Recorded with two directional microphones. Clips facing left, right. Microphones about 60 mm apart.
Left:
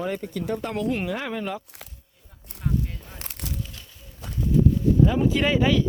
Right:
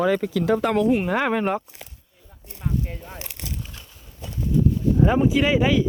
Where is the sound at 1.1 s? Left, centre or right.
Right.